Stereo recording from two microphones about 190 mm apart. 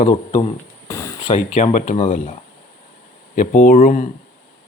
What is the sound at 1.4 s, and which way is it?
Speech, 40° left (ahead or behind).